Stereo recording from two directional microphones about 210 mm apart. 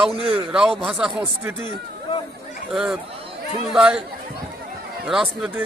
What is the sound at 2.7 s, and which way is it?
A man's voice, 5° right (ahead or behind).